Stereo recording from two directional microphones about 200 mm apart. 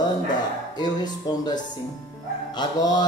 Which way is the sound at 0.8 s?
20° left (ahead or behind).